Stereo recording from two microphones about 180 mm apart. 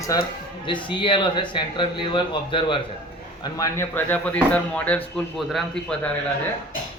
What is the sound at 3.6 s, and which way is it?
Speech, 10° left (ahead or behind).